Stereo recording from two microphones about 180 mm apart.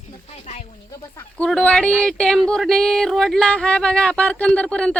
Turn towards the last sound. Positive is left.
turn(degrees=5)  # may be behind; listen again after turning